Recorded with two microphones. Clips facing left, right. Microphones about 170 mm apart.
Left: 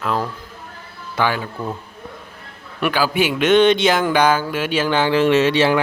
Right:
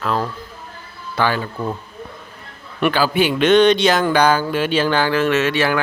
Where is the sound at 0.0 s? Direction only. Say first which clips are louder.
Right 1 dB; 15° left (ahead or behind).